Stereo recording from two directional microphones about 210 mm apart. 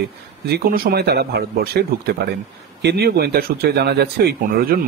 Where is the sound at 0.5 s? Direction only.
45° right (ahead or behind).